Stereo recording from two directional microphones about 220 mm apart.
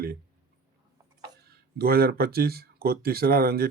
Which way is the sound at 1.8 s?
45° right (ahead or behind).